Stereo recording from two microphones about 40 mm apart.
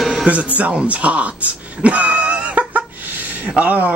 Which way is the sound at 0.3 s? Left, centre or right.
Right.